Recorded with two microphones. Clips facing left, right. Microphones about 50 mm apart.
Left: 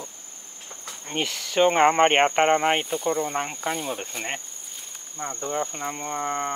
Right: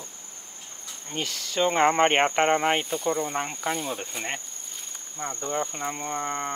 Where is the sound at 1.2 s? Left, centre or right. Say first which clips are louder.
Left 5 dB; centre.